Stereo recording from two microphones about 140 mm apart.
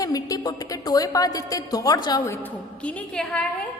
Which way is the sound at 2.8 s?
10° left (ahead or behind).